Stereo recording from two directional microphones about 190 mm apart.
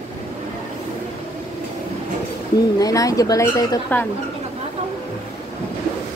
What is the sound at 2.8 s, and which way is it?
A woman's voice, 15° left (ahead or behind).